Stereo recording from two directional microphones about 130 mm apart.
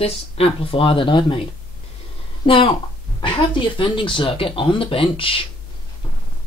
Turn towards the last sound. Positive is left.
turn(degrees=45)  # may be behind; listen again after turning